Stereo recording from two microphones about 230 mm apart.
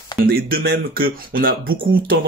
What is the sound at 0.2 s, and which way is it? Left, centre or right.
Speech, right.